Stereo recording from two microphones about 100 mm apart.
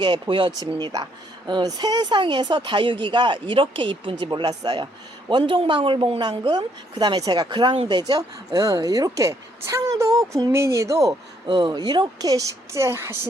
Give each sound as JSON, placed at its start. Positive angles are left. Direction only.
{"t": 0.0, "sound": "speech", "side_deg": -55}
{"t": 5.3, "sound": "speech", "side_deg": -60}
{"t": 11.4, "sound": "speech", "side_deg": -50}